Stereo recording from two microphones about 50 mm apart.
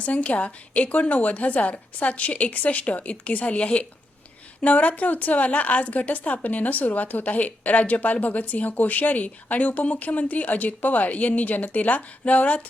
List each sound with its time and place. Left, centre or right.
0.0 s a woman's voice: left